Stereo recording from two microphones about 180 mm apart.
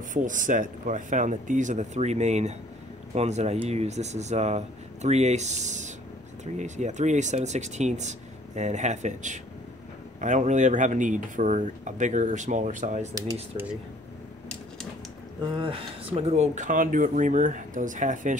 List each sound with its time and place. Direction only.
0.1 s speech: 45° right (ahead or behind)
13.1 s speech: 20° right (ahead or behind)
15.4 s speech: 25° right (ahead or behind); by 18.4 s 45° right (ahead or behind)